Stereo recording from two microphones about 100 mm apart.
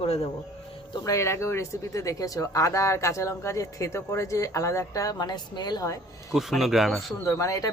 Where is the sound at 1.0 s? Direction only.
30° left (ahead or behind).